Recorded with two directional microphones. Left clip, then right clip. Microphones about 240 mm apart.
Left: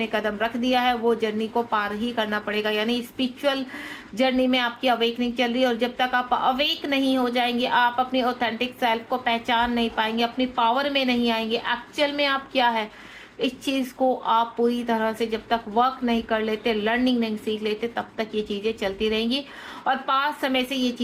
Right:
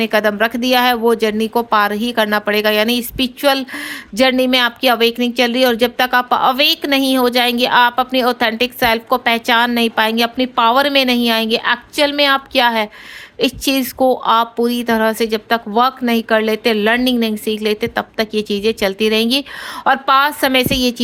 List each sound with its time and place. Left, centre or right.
0.0 s speech: right